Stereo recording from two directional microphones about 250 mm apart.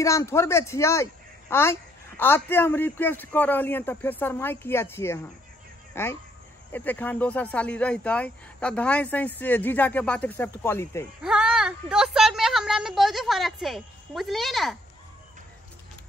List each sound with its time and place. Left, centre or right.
0.0 s speech: centre
11.2 s a woman's voice: centre